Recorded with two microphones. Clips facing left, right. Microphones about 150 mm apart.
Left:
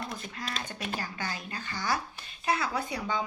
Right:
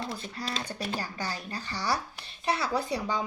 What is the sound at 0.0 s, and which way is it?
Speech, 35° right (ahead or behind).